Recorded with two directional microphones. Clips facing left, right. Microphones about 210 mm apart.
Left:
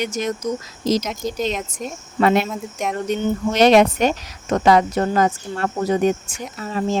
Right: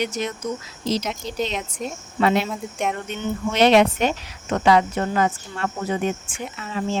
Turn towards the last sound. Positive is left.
turn(degrees=40)  # may be behind; listen again after turning